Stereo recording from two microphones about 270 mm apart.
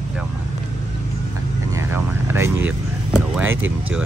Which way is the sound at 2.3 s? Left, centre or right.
Centre.